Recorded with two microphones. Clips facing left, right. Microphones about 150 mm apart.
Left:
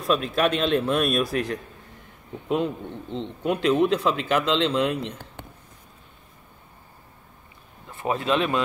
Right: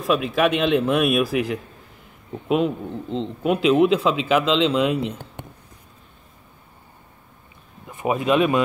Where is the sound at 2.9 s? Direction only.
35° right (ahead or behind).